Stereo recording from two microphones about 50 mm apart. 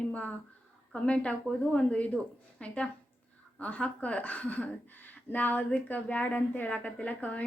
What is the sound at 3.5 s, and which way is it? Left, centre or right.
Speech, left.